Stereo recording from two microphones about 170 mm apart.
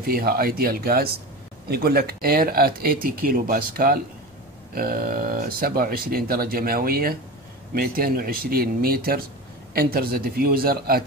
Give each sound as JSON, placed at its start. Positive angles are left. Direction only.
{"t": 0.0, "sound": "speech", "side_deg": -60}